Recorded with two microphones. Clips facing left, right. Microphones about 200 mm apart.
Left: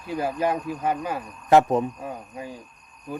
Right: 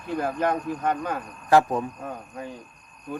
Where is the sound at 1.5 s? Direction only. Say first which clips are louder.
Left 2 dB; 20° left (ahead or behind).